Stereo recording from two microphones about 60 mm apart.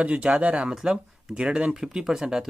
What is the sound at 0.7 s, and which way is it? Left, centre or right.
Speech, centre.